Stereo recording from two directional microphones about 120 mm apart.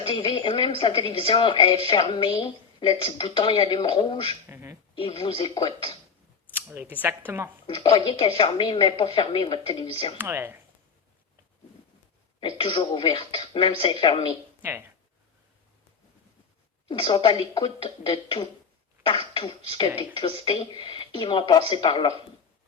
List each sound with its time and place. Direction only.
0.1 s a woman's voice: 45° left (ahead or behind)
4.4 s a sound: 20° right (ahead or behind)
4.9 s a woman's voice: 50° left (ahead or behind)
6.5 s speech: 15° right (ahead or behind)
7.7 s a woman's voice: 55° left (ahead or behind)
8.4 s a woman's voice: 40° left (ahead or behind)
10.2 s speech: 15° right (ahead or behind)
12.5 s a woman's voice: 50° left (ahead or behind)
14.6 s speech: 15° right (ahead or behind)
16.9 s a woman's voice: 45° left (ahead or behind)